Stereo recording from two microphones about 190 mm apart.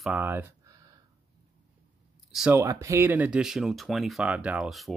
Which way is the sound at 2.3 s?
5° right (ahead or behind).